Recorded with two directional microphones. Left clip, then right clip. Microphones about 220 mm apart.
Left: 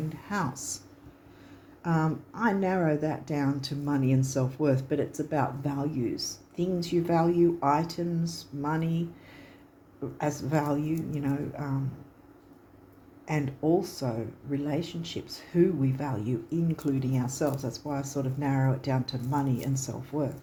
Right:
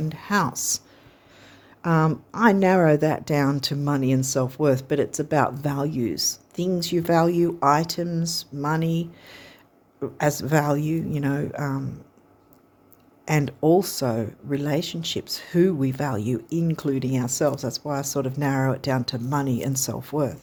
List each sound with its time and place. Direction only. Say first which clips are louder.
0.1 s speech: right 11 dB; 45° right (ahead or behind)
1.8 s speech: right 7 dB; 50° right (ahead or behind)
13.2 s speech: right 8 dB; 50° right (ahead or behind)